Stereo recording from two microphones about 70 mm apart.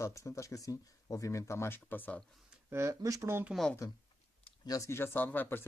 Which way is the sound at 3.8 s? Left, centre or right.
Left.